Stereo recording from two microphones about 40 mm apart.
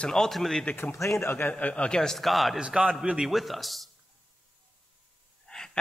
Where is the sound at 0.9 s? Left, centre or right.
Left.